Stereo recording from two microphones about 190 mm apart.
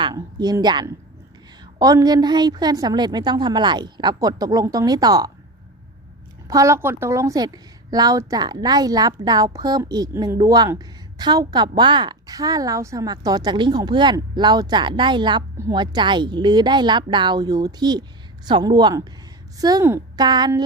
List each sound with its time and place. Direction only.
0.0 s a woman's voice: 20° right (ahead or behind)
6.5 s a woman's voice: 15° right (ahead or behind)